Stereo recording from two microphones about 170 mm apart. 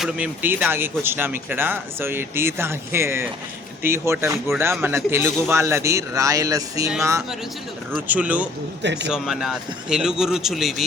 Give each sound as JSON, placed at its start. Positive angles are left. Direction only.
{"t": 0.0, "sound": "speech", "side_deg": -10}
{"t": 7.9, "sound": "speech", "side_deg": -10}
{"t": 8.8, "sound": "speech", "side_deg": -90}
{"t": 9.0, "sound": "a man's voice", "side_deg": 0}